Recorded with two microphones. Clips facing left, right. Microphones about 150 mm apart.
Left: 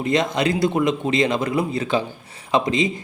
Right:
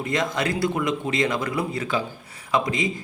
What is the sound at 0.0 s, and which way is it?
A man's voice, 20° left (ahead or behind).